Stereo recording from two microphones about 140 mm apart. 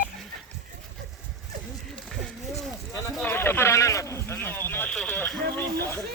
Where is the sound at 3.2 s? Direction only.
15° left (ahead or behind).